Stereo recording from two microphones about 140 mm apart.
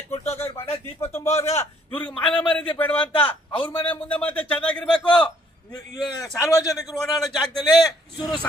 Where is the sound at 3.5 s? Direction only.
40° left (ahead or behind).